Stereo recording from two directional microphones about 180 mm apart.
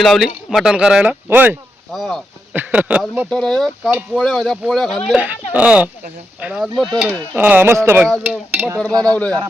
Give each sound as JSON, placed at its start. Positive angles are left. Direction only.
{"t": 0.0, "sound": "speech", "side_deg": 0}
{"t": 1.9, "sound": "speech", "side_deg": 0}
{"t": 3.2, "sound": "speech", "side_deg": 5}
{"t": 5.1, "sound": "speech", "side_deg": -10}
{"t": 9.1, "sound": "a man's voice", "side_deg": 5}